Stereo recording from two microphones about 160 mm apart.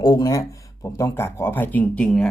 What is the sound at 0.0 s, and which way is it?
Speech, 25° left (ahead or behind).